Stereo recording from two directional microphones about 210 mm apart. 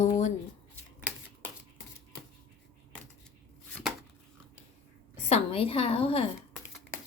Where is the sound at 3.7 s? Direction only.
5° left (ahead or behind).